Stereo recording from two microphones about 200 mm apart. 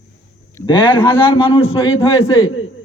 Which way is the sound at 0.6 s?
25° left (ahead or behind).